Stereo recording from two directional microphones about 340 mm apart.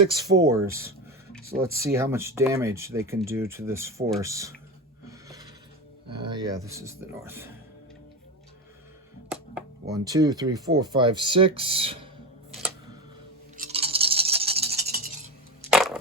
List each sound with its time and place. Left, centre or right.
0.3 s speech: centre
6.1 s speech: centre
10.0 s speech: centre
12.5 s a sound: centre
13.6 s toothbrush: right
15.7 s crushing: centre